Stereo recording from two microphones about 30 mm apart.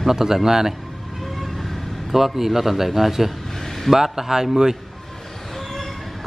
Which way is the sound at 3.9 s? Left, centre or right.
Centre.